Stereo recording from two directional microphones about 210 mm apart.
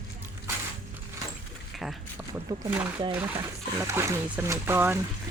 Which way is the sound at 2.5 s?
15° right (ahead or behind).